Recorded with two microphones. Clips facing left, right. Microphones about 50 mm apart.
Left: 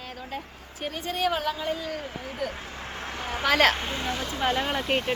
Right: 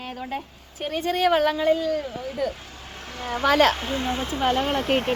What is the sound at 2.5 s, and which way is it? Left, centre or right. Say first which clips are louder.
Vehicle: left 3 dB; left.